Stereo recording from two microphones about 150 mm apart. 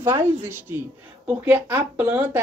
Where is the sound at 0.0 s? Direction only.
15° right (ahead or behind).